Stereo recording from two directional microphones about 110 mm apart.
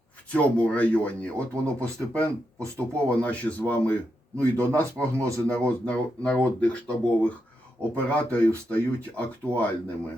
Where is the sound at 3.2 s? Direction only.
15° left (ahead or behind).